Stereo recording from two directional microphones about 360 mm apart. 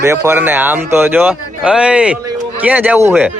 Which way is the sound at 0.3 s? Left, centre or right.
Centre.